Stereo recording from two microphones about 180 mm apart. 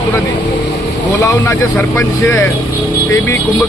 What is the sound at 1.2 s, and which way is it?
Speech, 20° left (ahead or behind).